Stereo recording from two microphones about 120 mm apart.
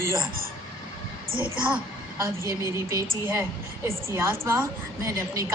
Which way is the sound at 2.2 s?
25° right (ahead or behind).